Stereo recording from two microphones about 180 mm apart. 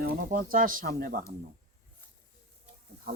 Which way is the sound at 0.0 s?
50° right (ahead or behind).